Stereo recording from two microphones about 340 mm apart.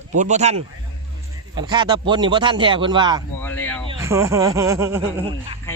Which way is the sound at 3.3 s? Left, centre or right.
Centre.